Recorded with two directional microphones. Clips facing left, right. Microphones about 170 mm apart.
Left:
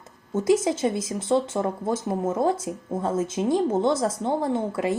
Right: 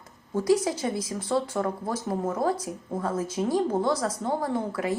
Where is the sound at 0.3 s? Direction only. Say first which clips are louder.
Left 2 dB; 25° left (ahead or behind).